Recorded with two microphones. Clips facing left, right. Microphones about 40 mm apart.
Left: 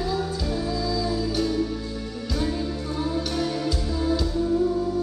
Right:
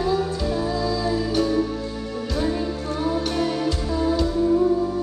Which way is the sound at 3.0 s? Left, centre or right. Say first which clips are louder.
Right 4 dB; centre.